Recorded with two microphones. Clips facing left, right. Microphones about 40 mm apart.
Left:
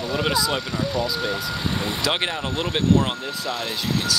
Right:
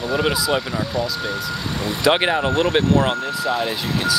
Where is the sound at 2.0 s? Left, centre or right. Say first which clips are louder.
Right 10 dB; centre.